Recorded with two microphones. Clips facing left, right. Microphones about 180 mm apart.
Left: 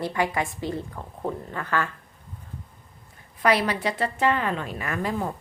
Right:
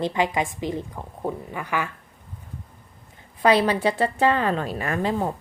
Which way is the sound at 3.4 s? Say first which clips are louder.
Right 4 dB; 25° right (ahead or behind).